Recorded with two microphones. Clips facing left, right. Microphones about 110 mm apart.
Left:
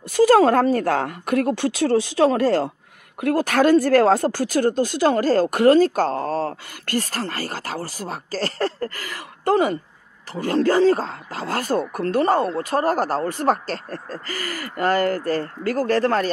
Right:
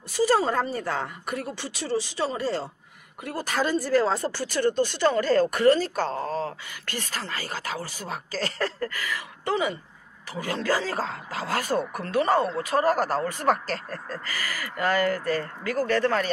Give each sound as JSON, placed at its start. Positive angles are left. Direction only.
{"t": 0.1, "sound": "a woman's voice", "side_deg": 70}
{"t": 5.6, "sound": "speech", "side_deg": 50}